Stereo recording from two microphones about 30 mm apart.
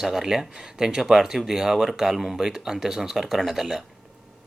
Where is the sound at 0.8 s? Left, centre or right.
Right.